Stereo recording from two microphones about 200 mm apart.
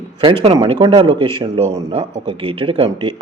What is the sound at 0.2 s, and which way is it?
A man's voice, 25° right (ahead or behind).